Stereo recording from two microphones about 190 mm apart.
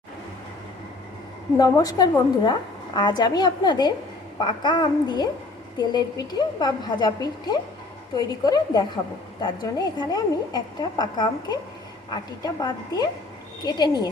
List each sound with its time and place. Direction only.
1.5 s a woman's voice: 20° left (ahead or behind)